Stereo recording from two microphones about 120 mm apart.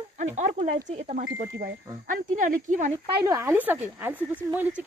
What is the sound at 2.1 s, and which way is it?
Speech, 90° right.